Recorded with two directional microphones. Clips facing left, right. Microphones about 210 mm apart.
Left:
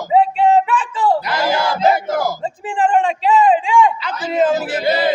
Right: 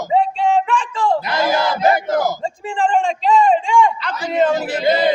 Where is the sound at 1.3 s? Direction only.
20° right (ahead or behind).